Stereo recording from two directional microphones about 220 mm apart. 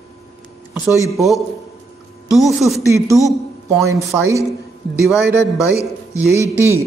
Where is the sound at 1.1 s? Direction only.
Centre (ahead or behind).